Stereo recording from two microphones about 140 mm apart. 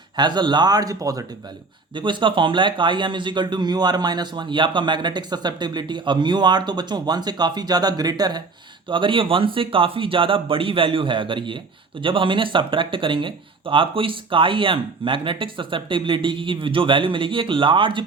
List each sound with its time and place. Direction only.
0.2 s speech: 30° right (ahead or behind)
2.0 s speech: 35° right (ahead or behind)